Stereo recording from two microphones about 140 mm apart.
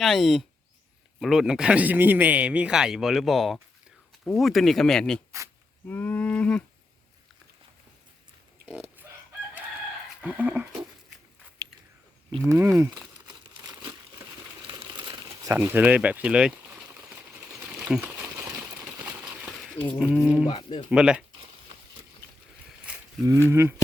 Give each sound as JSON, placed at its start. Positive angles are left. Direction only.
{"t": 0.0, "sound": "speech", "side_deg": 0}
{"t": 5.9, "sound": "cattle", "side_deg": 10}
{"t": 10.2, "sound": "speech", "side_deg": -10}
{"t": 11.6, "sound": "a sound", "side_deg": -25}
{"t": 12.5, "sound": "speech", "side_deg": -20}
{"t": 13.2, "sound": "crumpling", "side_deg": -30}
{"t": 15.4, "sound": "a sound", "side_deg": -15}
{"t": 20.1, "sound": "speech", "side_deg": -10}
{"t": 20.5, "sound": "speech", "side_deg": 40}
{"t": 20.9, "sound": "speech", "side_deg": -5}
{"t": 23.2, "sound": "speech", "side_deg": -20}